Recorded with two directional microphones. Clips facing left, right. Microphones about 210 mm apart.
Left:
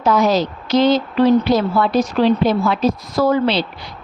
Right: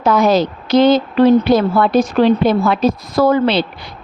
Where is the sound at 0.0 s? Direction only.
55° right (ahead or behind).